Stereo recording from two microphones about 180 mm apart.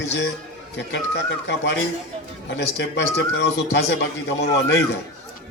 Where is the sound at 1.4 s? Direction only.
80° left.